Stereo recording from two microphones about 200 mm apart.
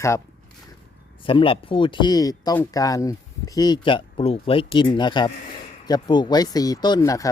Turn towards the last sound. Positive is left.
turn(degrees=15)  # may be behind; listen again after turning